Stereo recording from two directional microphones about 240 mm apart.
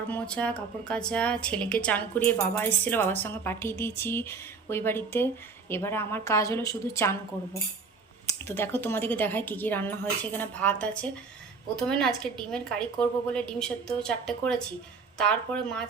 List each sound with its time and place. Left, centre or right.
0.1 s a woman's voice: centre
8.3 s a woman's voice: centre